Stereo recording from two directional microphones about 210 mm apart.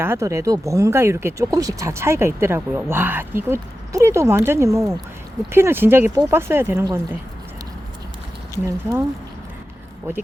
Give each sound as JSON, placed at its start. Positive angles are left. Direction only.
{"t": 0.0, "sound": "speech", "side_deg": -10}
{"t": 8.5, "sound": "speech", "side_deg": -15}